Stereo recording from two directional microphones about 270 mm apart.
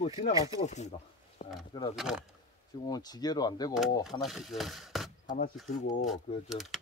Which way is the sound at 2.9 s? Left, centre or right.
Centre.